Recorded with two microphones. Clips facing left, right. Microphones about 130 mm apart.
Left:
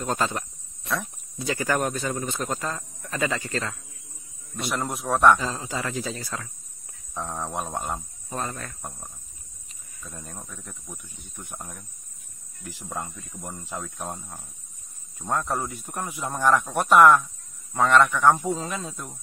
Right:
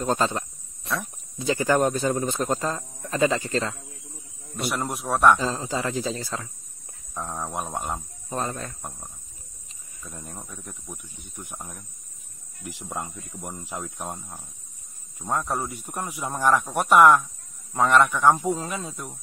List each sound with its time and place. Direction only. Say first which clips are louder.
0.0 s speech: right 3 dB; 30° right (ahead or behind)
4.6 s speech: right 1 dB; 5° right (ahead or behind)
5.4 s speech: right 3 dB; 25° right (ahead or behind)
7.2 s speech: even; 5° right (ahead or behind)
8.3 s speech: right 2 dB; 25° right (ahead or behind)
10.1 s speech: right 1 dB; 15° right (ahead or behind)
12.6 s speech: right 1 dB; 15° right (ahead or behind)